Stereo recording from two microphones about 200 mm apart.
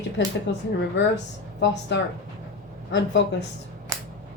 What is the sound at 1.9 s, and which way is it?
Speech, 60° left (ahead or behind).